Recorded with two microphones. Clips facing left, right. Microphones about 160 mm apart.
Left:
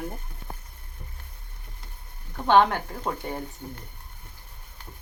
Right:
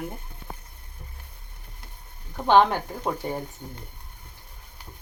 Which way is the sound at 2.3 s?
15° right (ahead or behind).